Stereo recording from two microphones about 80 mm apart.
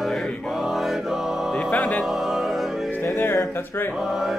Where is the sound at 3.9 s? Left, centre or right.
Centre.